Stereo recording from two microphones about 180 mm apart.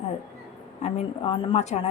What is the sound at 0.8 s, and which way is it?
Speech, 35° left (ahead or behind).